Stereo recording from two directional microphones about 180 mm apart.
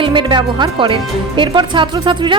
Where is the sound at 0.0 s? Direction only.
25° right (ahead or behind).